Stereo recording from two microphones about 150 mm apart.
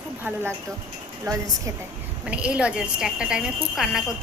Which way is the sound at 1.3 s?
25° right (ahead or behind).